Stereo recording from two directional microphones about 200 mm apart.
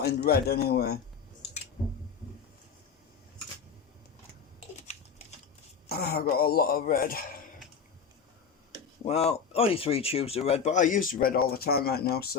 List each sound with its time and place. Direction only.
0.0 s speech: 55° left (ahead or behind)
5.9 s speech: 50° left (ahead or behind)
9.0 s speech: 30° left (ahead or behind); by 12.3 s 50° left (ahead or behind)